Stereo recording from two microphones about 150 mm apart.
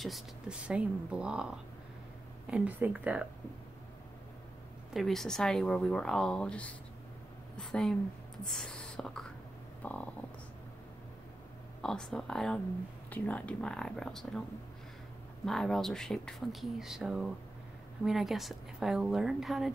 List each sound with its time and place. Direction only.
0.0 s speech: 5° right (ahead or behind)
4.9 s speech: centre (ahead or behind)
9.8 s stomach rumble: 10° left (ahead or behind)
11.8 s speech: 5° left (ahead or behind)
15.4 s speech: 5° left (ahead or behind)